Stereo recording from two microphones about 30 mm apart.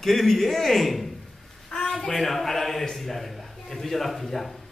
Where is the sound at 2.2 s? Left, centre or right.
Centre.